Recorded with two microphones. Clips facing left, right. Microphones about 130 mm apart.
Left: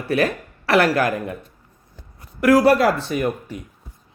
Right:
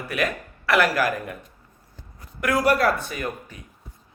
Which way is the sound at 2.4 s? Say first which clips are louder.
Left 6 dB; 30° left (ahead or behind).